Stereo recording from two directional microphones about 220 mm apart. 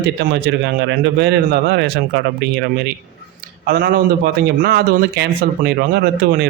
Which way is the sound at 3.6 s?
45° right (ahead or behind).